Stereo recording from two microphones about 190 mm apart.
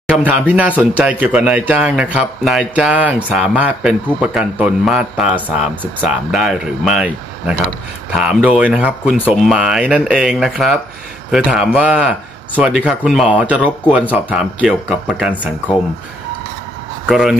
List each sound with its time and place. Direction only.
0.1 s speech: 5° right (ahead or behind)
17.1 s speech: 5° right (ahead or behind)